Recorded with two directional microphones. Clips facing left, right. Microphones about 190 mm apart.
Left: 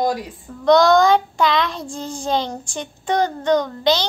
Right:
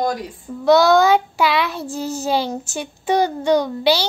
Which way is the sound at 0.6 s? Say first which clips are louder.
Even; 5° right (ahead or behind).